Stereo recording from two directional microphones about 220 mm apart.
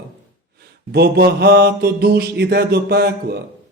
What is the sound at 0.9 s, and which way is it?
Mantra, 45° right (ahead or behind).